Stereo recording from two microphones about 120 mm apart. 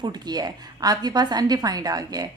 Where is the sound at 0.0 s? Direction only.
35° right (ahead or behind).